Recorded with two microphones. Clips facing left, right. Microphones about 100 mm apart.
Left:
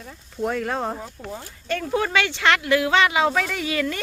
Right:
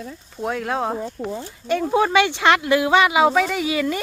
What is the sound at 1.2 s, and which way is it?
Speech, 20° right (ahead or behind).